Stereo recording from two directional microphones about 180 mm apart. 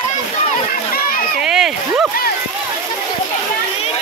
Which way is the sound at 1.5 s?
5° right (ahead or behind).